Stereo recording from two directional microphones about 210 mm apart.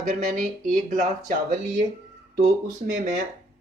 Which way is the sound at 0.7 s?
35° right (ahead or behind).